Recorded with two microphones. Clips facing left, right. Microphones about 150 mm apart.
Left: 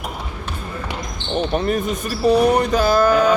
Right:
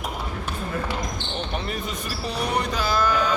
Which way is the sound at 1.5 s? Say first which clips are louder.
Left 9 dB; 45° left (ahead or behind).